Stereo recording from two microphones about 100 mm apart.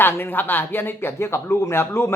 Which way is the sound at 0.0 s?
20° left (ahead or behind).